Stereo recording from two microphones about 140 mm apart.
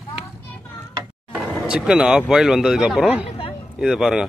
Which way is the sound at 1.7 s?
5° right (ahead or behind).